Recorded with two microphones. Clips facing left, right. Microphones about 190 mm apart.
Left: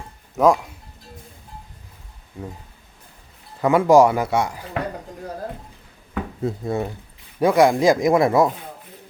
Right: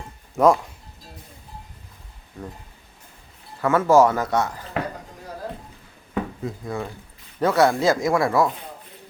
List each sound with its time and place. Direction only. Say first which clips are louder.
0.3 s speech: even; centre (ahead or behind)
2.4 s a man's voice: left 2 dB; 10° left (ahead or behind)
3.6 s a man's voice: left 2 dB; 15° left (ahead or behind)
6.4 s speech: left 5 dB; 25° left (ahead or behind)
7.3 s a man's voice: left 3 dB; 15° left (ahead or behind)